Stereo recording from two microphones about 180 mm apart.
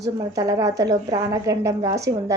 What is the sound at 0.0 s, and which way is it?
A woman's voice, 20° right (ahead or behind).